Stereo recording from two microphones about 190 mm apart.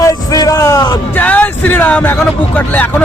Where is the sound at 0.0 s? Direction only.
20° left (ahead or behind).